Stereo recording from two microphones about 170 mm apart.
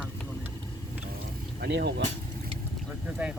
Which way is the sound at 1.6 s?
80° right.